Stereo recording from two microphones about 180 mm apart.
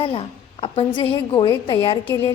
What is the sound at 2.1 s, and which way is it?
Speech, 15° left (ahead or behind).